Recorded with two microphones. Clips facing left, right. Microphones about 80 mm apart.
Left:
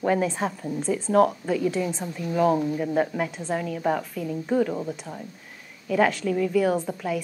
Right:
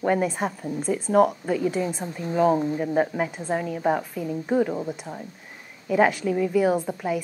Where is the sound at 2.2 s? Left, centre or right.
Right.